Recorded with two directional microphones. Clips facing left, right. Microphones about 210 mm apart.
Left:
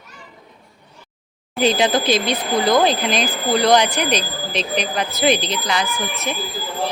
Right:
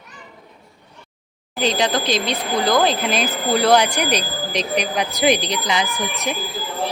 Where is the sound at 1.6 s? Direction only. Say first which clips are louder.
Left 3 dB; 5° left (ahead or behind); by 6.3 s 15° right (ahead or behind).